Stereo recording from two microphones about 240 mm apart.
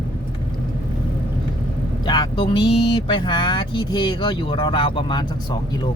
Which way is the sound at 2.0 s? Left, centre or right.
Centre.